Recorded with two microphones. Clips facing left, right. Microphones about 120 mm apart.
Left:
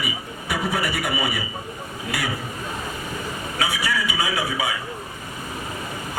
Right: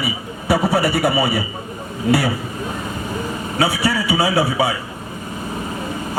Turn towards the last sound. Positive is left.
turn(degrees=-35)  # may be behind; listen again after turning